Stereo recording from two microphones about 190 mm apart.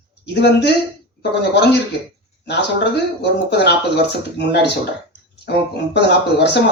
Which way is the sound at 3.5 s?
60° left (ahead or behind).